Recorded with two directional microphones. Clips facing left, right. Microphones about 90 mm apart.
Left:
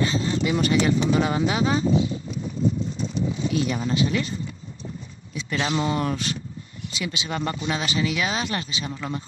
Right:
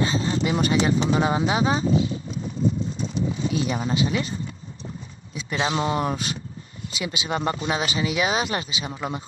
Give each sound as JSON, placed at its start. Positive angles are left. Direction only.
{"t": 0.0, "sound": "speech", "side_deg": -25}
{"t": 3.5, "sound": "speech", "side_deg": -20}
{"t": 5.3, "sound": "speech", "side_deg": -20}